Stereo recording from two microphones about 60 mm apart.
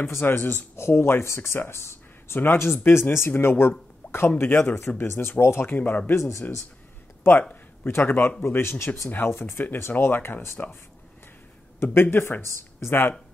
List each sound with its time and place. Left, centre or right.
0.0 s speech: left
0.7 s speech: left
4.0 s a sound: left
4.4 s speech: left
5.7 s speech: left
7.9 s speech: left
9.1 s speech: left
11.8 s speech: left